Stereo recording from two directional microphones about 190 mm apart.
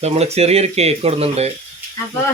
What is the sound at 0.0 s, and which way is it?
Speech, 35° right (ahead or behind).